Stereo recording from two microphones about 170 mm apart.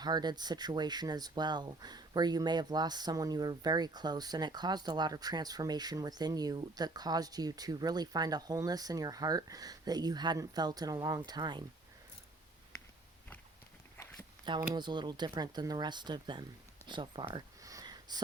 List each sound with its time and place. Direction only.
0.0 s speech: 25° right (ahead or behind)
14.7 s speech: 25° right (ahead or behind)
16.9 s a sound: 25° right (ahead or behind)